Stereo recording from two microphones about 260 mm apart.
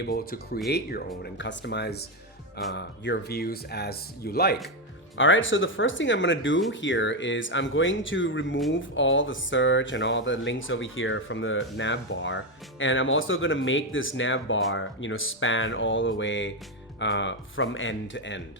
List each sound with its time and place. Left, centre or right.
0.0 s speech: left
5.1 s speech: left